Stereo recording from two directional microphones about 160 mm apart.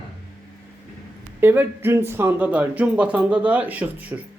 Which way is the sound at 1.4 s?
15° right (ahead or behind).